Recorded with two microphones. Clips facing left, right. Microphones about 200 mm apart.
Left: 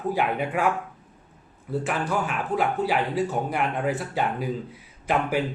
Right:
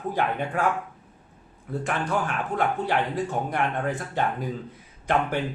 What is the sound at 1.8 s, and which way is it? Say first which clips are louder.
Speech: right 1 dB; 5° left (ahead or behind).